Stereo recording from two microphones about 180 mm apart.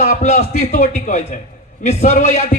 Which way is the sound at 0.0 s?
40° left (ahead or behind).